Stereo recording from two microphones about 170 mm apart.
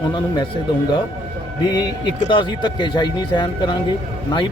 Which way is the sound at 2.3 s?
25° left (ahead or behind).